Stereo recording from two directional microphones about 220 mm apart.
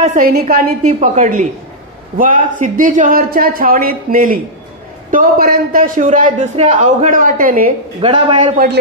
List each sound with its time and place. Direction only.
0.0 s a man's voice: 40° right (ahead or behind)
8.0 s a man's voice: 20° right (ahead or behind)